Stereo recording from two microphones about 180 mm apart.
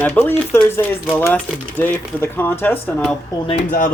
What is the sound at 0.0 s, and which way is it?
Speech, 10° left (ahead or behind).